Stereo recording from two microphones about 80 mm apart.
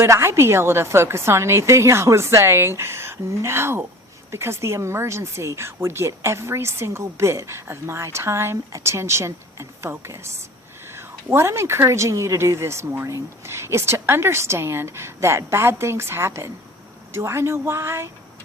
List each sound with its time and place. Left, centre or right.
0.0 s speech: right